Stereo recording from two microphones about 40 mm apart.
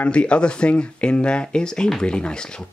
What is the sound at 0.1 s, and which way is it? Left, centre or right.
Speech, left.